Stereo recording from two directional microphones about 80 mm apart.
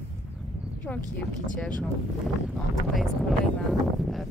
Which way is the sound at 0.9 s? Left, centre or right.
Left.